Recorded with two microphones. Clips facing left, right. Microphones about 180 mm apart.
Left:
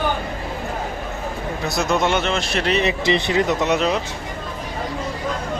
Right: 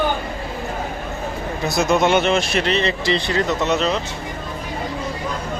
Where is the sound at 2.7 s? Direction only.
15° left (ahead or behind).